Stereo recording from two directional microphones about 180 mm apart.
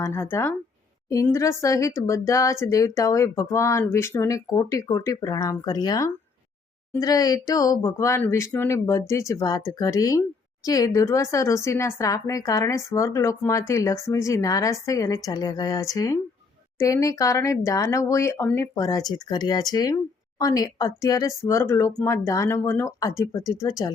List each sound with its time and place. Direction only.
0.0 s speech: 15° left (ahead or behind)